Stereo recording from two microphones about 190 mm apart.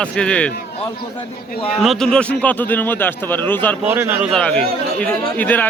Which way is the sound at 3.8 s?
10° right (ahead or behind).